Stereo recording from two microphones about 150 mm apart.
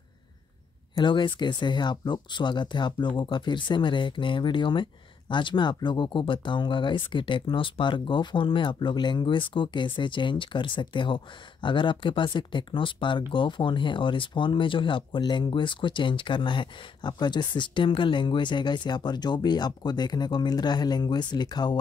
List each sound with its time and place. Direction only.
0.9 s speech: 30° left (ahead or behind)